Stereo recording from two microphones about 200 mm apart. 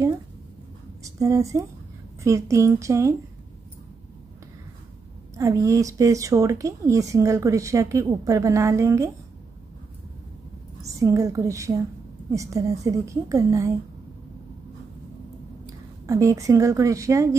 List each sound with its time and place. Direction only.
1.0 s a woman's voice: 15° right (ahead or behind)
5.3 s speech: 15° right (ahead or behind)
10.8 s a woman's voice: 15° right (ahead or behind)
15.6 s speech: 15° right (ahead or behind)